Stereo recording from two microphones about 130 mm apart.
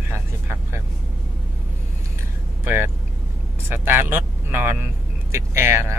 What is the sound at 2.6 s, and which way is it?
Vehicle, 20° right (ahead or behind).